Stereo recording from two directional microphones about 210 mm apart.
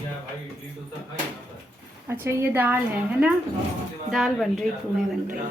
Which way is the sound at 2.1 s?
10° right (ahead or behind).